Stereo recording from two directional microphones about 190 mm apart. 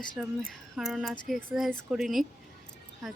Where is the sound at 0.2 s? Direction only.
Centre (ahead or behind).